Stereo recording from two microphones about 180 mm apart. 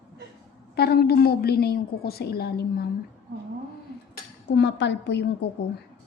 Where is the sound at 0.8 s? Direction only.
60° left (ahead or behind).